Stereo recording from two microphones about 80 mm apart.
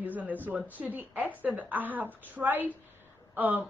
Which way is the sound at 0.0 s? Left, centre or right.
Right.